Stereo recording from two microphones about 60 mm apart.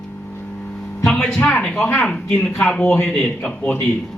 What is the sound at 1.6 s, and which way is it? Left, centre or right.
A man's voice, centre.